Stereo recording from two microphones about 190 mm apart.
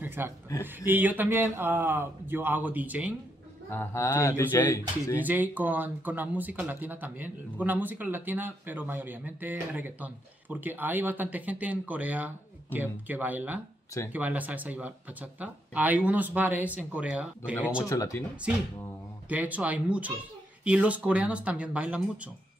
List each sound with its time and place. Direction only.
0.0 s a sound: 10° right (ahead or behind)
0.8 s speech: 10° right (ahead or behind)
3.7 s speech: 10° left (ahead or behind)
5.1 s speech: 10° right (ahead or behind)
17.8 s speech: 15° left (ahead or behind)
19.2 s speech: 10° right (ahead or behind)